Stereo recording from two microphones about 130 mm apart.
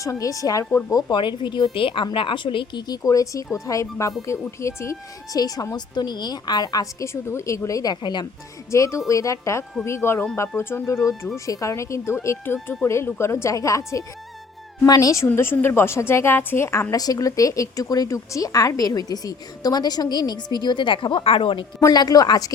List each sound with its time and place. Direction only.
0.0 s a woman's voice: 25° left (ahead or behind)
0.9 s a woman's voice: 30° left (ahead or behind)
8.7 s a woman's voice: 20° left (ahead or behind); by 21.7 s 45° left (ahead or behind)
21.8 s a woman's voice: 30° left (ahead or behind)